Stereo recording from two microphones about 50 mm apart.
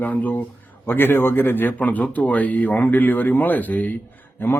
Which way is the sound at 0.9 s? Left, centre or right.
Left.